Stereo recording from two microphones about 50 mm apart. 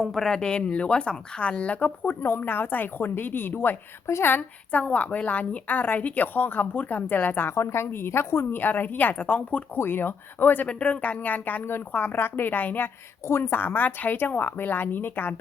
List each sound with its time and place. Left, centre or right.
0.0 s speech: centre; by 2.1 s left
2.2 s a woman's voice: left
4.0 s speech: left
4.3 s a woman's voice: left
7.5 s speech: left
8.5 s a woman's voice: left
9.7 s speech: left
10.7 s a woman's voice: left
13.2 s speech: left
13.5 s a woman's voice: left